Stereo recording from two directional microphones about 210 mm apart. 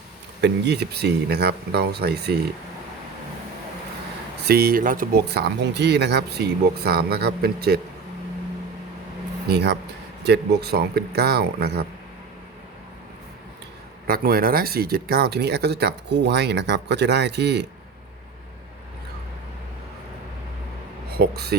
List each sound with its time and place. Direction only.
0.4 s speech: 55° right (ahead or behind)
4.4 s speech: 45° right (ahead or behind)
9.5 s speech: 50° right (ahead or behind)
14.1 s speech: 45° right (ahead or behind)
21.1 s speech: 50° right (ahead or behind)